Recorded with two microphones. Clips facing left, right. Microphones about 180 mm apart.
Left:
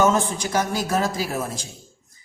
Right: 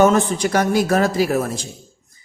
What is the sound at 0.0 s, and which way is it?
A man's voice, 65° right (ahead or behind).